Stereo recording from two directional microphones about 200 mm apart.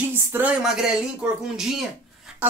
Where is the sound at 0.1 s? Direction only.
10° right (ahead or behind).